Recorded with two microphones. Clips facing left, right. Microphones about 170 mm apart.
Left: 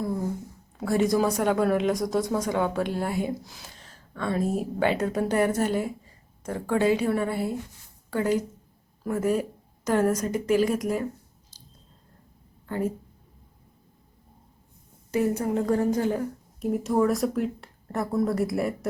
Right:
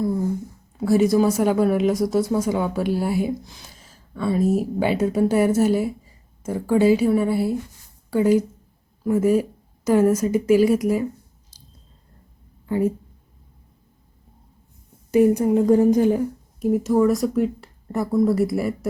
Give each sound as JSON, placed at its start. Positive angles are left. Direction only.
{"t": 0.8, "sound": "a woman's voice", "side_deg": -5}
{"t": 12.6, "sound": "a woman's voice", "side_deg": -10}
{"t": 15.1, "sound": "a woman's voice", "side_deg": -15}
{"t": 16.6, "sound": "speech", "side_deg": 0}